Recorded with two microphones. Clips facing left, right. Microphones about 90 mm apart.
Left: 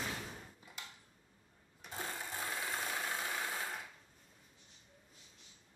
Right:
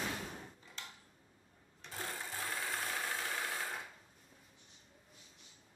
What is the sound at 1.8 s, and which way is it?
Sewing machine, 10° left (ahead or behind).